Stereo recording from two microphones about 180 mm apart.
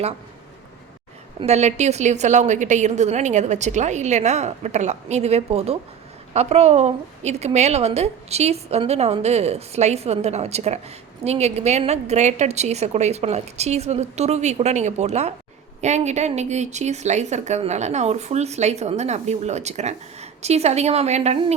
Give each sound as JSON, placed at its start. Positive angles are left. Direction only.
{"t": 1.4, "sound": "a woman's voice", "side_deg": -40}